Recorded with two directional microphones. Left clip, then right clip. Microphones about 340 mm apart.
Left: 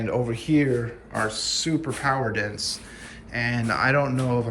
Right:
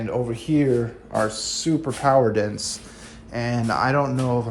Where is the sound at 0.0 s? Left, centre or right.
Centre.